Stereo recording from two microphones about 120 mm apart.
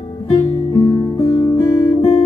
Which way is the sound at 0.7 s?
40° left (ahead or behind).